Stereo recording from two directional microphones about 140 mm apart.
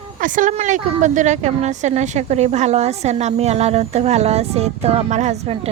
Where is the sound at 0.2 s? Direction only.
70° right (ahead or behind).